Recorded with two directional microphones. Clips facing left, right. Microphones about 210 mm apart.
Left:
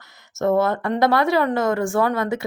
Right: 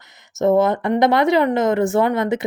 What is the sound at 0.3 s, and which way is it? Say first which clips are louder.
Speech: right 3 dB; 20° right (ahead or behind).